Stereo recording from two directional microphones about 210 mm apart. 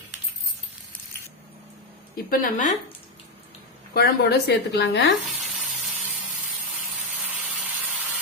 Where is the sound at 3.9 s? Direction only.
50° left (ahead or behind).